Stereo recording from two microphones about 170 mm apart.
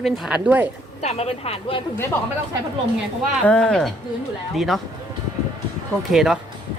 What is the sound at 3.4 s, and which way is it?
Speech, 5° left (ahead or behind).